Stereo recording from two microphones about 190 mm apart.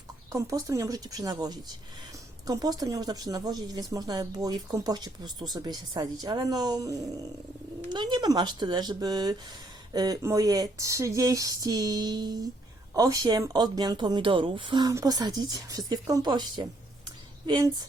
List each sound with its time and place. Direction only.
0.3 s a woman's voice: 20° right (ahead or behind)